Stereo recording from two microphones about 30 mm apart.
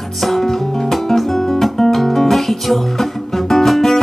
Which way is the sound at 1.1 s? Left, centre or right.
Centre.